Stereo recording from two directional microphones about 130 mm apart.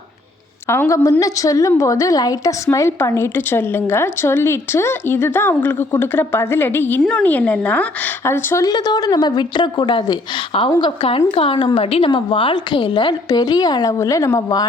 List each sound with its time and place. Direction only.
0.7 s a woman's voice: 20° left (ahead or behind)